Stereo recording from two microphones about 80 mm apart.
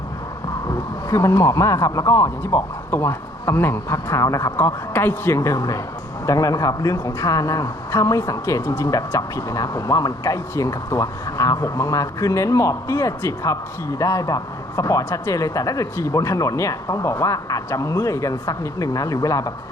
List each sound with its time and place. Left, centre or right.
0.7 s speech: left
4.5 s a man's voice: left
5.4 s speech: left